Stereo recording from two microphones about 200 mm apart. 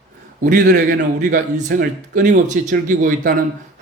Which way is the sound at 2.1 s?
40° right (ahead or behind).